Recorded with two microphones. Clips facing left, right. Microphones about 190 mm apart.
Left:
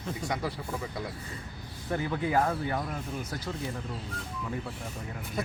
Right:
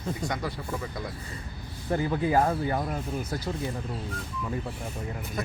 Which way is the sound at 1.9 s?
30° right (ahead or behind).